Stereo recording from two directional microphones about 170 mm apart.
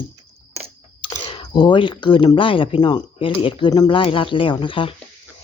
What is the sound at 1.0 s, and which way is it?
A child's voice, 30° left (ahead or behind).